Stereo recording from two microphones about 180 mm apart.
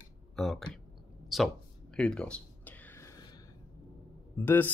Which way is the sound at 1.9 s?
5° left (ahead or behind).